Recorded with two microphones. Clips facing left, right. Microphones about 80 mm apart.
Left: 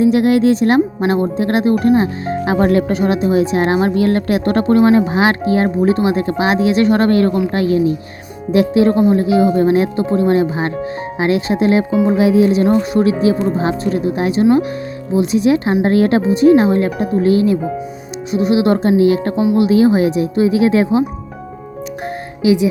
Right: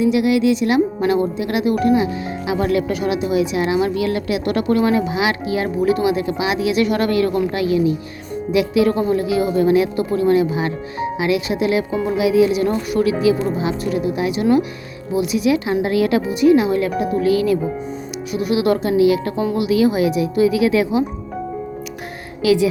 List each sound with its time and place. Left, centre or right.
0.0 s a woman's voice: left
22.4 s speech: left